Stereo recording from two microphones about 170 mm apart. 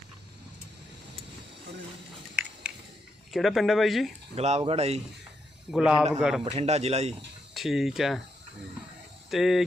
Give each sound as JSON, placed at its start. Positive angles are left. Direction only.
{"t": 3.3, "sound": "speech", "side_deg": 0}
{"t": 4.4, "sound": "a man's voice", "side_deg": -40}
{"t": 5.7, "sound": "speech", "side_deg": -5}
{"t": 6.4, "sound": "a man's voice", "side_deg": -40}
{"t": 7.5, "sound": "speech", "side_deg": 0}
{"t": 9.3, "sound": "speech", "side_deg": 0}